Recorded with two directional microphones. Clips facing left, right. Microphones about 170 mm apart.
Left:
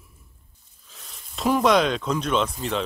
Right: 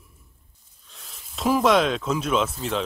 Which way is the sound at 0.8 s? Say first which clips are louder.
Even; centre (ahead or behind).